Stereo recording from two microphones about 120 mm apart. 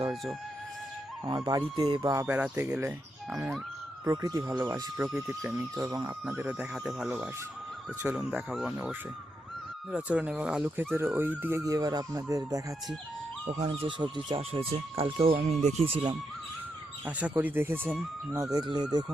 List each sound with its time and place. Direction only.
1.2 s speech: 35° right (ahead or behind)
2.2 s speech: 15° right (ahead or behind)
4.0 s speech: 30° right (ahead or behind)
6.2 s speech: 15° right (ahead or behind)
10.9 s speech: 20° right (ahead or behind)
11.6 s speech: 30° right (ahead or behind)
13.5 s speech: 55° right (ahead or behind)
14.3 s speech: 55° right (ahead or behind)
15.4 s speech: 65° right (ahead or behind)
17.1 s speech: 10° right (ahead or behind)
18.5 s speech: 35° right (ahead or behind)